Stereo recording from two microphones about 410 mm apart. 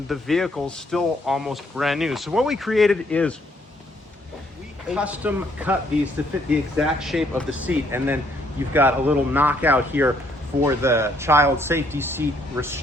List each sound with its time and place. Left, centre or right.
0.1 s speech: centre
4.9 s speech: centre